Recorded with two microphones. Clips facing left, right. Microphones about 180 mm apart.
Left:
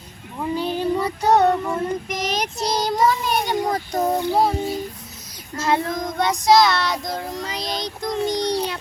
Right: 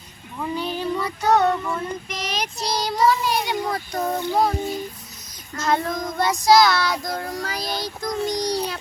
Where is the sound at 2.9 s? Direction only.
20° left (ahead or behind).